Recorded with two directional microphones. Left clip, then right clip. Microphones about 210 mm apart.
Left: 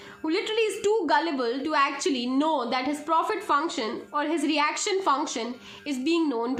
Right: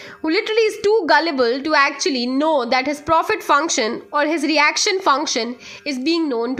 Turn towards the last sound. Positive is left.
turn(degrees=-35)  # may be behind; listen again after turning